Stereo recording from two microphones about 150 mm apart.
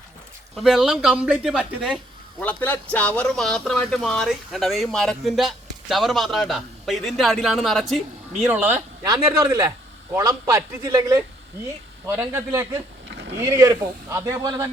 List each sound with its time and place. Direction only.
0.5 s a man's voice: centre (ahead or behind)
2.4 s a man's voice: 10° left (ahead or behind)
8.4 s speech: 10° right (ahead or behind)
9.0 s a man's voice: 25° right (ahead or behind)